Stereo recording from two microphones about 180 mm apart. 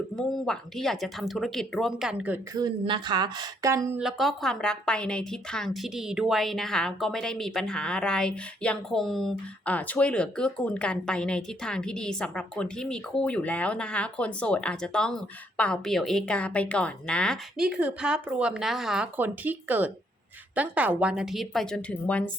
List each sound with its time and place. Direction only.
0.2 s a woman's voice: 5° left (ahead or behind)
2.6 s speech: 25° right (ahead or behind)
4.0 s a woman's voice: centre (ahead or behind)
17.7 s a woman's voice: 5° right (ahead or behind)